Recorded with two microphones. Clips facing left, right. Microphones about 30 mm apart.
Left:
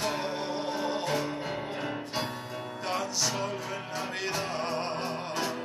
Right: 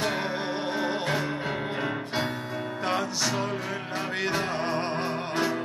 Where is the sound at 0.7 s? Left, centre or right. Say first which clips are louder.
Right 3 dB; right.